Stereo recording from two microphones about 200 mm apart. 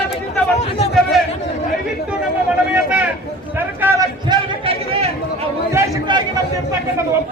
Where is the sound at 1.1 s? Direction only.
Centre (ahead or behind).